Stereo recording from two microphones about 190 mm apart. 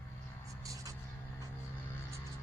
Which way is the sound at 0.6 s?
15° right (ahead or behind).